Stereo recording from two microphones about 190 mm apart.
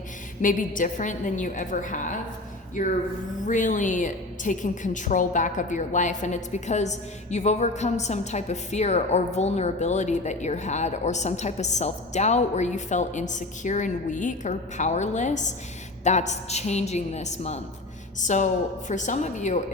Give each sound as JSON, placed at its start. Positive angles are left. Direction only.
{"t": 0.4, "sound": "a woman's voice", "side_deg": 45}